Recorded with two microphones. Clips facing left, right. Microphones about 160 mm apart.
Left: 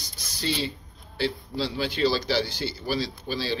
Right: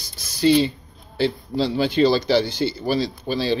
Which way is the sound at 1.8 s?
20° right (ahead or behind).